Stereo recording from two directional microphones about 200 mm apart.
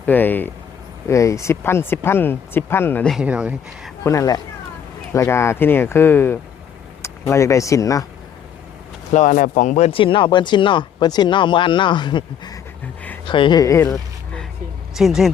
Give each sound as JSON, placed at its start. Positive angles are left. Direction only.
{"t": 0.0, "sound": "speech", "side_deg": 10}
{"t": 4.0, "sound": "speech", "side_deg": 15}
{"t": 9.1, "sound": "speech", "side_deg": 40}
{"t": 14.9, "sound": "speech", "side_deg": 0}